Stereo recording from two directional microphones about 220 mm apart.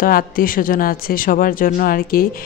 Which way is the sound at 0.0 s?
40° left (ahead or behind).